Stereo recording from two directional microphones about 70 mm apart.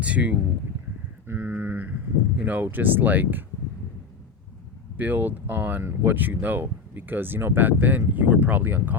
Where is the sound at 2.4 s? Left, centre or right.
Right.